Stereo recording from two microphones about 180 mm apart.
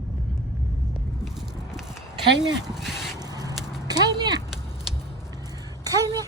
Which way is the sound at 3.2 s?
20° right (ahead or behind).